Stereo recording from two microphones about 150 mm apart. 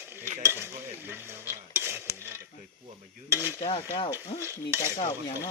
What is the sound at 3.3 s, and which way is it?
Stir, 10° right (ahead or behind).